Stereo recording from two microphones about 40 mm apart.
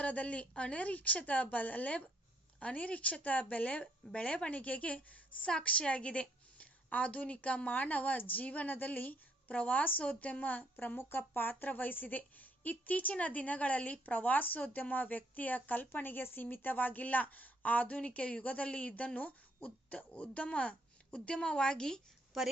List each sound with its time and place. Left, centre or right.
0.0 s a woman's voice: left
10.9 s a woman's voice: left; by 22.0 s centre
22.3 s a woman's voice: centre